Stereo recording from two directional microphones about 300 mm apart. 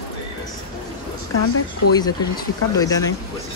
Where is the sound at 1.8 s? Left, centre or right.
Left.